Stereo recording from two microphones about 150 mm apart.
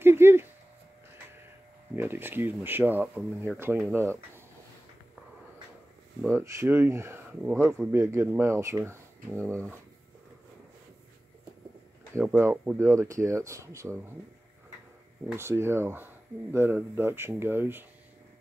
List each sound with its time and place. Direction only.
0.0 s a sound: 15° right (ahead or behind)
2.0 s speech: 15° right (ahead or behind)
6.3 s speech: 15° right (ahead or behind)
12.4 s speech: 15° right (ahead or behind)
15.3 s speech: 15° right (ahead or behind)